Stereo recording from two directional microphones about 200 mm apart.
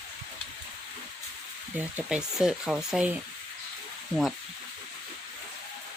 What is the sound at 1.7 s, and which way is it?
Speech, 5° right (ahead or behind).